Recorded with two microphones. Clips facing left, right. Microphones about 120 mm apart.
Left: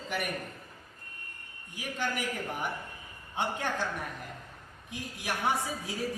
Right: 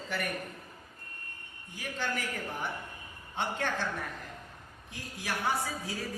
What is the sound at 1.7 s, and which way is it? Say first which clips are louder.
A woman's voice: left 1 dB; 15° left (ahead or behind).